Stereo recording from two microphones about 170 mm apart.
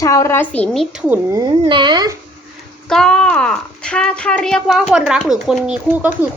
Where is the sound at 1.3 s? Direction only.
20° right (ahead or behind).